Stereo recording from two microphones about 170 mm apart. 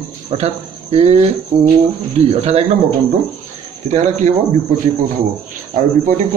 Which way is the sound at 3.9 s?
45° right (ahead or behind).